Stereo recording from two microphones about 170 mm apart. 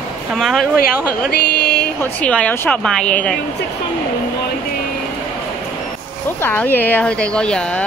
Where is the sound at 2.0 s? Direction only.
10° left (ahead or behind).